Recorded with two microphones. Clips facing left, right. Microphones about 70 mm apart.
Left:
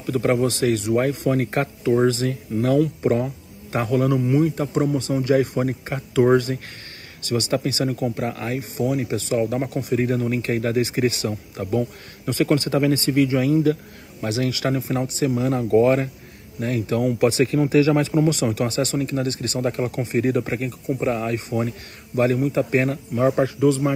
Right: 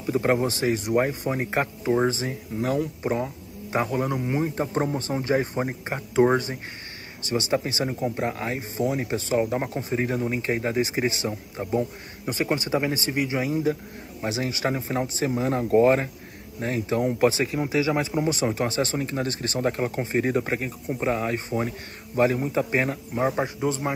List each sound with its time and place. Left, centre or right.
0.0 s a man's voice: right